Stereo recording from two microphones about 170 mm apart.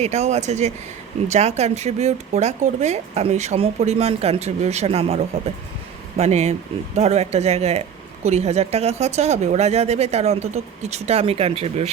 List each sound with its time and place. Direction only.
0.0 s speech: 40° right (ahead or behind)